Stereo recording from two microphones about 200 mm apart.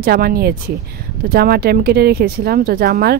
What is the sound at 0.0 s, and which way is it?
Speech, 50° right (ahead or behind).